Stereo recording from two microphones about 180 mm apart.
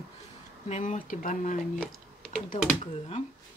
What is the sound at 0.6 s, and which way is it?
Speech, 40° left (ahead or behind).